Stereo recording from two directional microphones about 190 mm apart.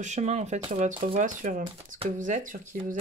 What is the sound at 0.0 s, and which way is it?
Speech, 35° right (ahead or behind).